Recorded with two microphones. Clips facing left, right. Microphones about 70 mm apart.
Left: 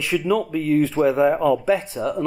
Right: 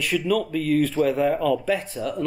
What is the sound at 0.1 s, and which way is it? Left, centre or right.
Speech, centre.